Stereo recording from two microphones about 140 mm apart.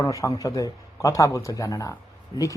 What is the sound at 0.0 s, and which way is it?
A man's voice, 25° left (ahead or behind).